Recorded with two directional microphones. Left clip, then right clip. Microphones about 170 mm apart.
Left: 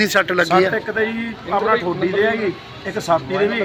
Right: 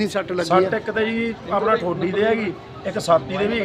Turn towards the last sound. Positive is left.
turn(degrees=-35)  # may be behind; listen again after turning